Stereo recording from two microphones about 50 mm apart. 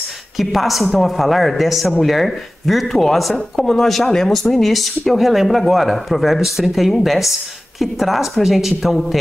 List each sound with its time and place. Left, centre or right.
0.4 s speech: centre